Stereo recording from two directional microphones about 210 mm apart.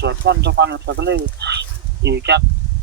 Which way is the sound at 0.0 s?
55° right (ahead or behind).